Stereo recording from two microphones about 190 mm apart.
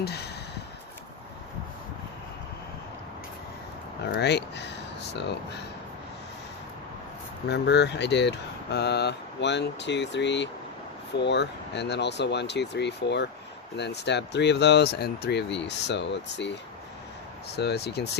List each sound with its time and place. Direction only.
0.0 s a sound: 60° left (ahead or behind)
4.1 s speech: 65° left (ahead or behind)
7.4 s speech: 65° left (ahead or behind)